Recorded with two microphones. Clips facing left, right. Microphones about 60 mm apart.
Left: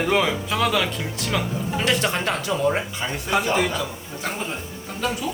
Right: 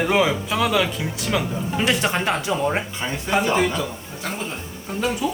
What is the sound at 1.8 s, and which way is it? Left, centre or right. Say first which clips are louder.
Speech: right 2 dB; centre.